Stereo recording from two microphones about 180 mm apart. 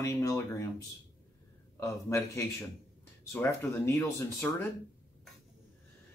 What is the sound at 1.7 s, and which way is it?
Speech, 15° left (ahead or behind).